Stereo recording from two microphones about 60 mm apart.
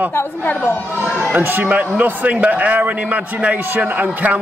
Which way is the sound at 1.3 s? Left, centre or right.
Right.